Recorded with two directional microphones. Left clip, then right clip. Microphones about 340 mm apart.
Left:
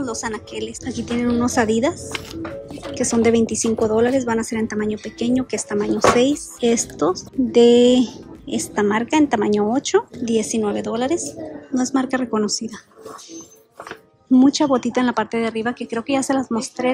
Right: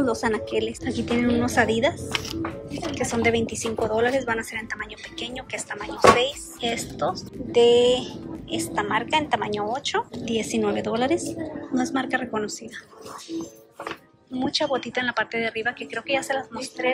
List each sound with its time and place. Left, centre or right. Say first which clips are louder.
0.0 s a woman's voice: right 3 dB; centre
3.0 s a woman's voice: left 6 dB; centre
14.6 s a woman's voice: left 6 dB; centre